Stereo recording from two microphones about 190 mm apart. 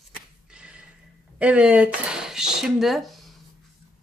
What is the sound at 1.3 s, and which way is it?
Speech, 5° right (ahead or behind).